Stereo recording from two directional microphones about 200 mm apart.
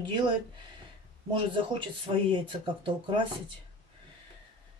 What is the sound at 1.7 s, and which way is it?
Speech, 25° right (ahead or behind).